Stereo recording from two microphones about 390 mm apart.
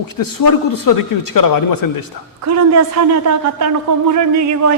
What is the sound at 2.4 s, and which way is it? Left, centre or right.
A man's voice, right.